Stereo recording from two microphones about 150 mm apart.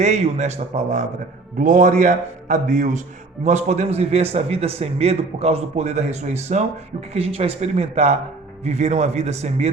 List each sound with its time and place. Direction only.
0.0 s a man's voice: 50° right (ahead or behind)
1.5 s a man's voice: 60° right (ahead or behind)